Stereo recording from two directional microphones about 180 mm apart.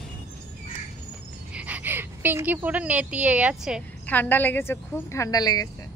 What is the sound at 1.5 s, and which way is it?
A woman's voice, 10° right (ahead or behind).